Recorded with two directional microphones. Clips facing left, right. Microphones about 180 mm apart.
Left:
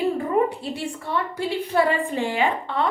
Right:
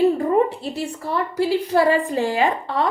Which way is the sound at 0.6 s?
40° right (ahead or behind).